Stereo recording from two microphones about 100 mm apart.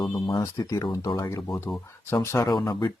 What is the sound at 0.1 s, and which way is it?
Speech, 45° left (ahead or behind).